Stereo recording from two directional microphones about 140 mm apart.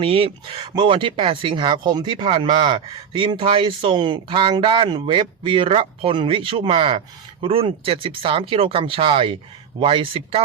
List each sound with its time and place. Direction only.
0.0 s speech: 40° right (ahead or behind)